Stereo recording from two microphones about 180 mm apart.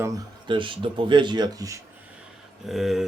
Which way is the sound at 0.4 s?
25° right (ahead or behind).